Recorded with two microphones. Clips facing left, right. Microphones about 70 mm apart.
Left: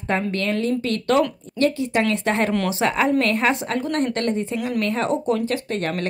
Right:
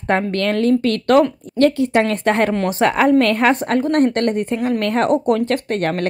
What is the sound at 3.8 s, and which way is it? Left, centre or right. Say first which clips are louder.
A woman's voice: right 7 dB; right.